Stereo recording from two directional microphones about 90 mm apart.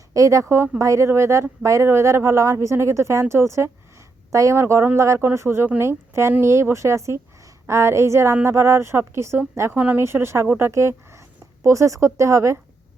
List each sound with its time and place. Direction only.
0.1 s a woman's voice: 35° right (ahead or behind)